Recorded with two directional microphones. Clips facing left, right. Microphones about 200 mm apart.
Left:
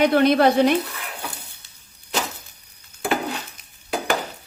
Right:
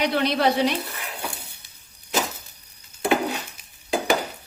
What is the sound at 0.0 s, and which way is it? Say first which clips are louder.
Speech: left 6 dB; 50° left (ahead or behind).